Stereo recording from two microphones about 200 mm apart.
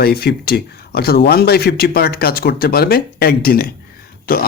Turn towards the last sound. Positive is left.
turn(degrees=50)  # may be behind; listen again after turning